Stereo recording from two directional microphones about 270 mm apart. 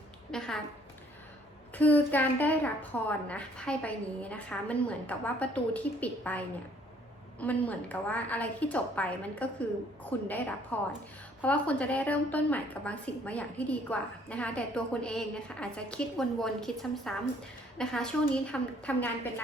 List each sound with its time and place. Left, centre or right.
0.3 s a woman's voice: centre
1.7 s a woman's voice: centre